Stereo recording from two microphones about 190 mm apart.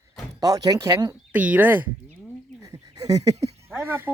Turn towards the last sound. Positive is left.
turn(degrees=-10)  # may be behind; listen again after turning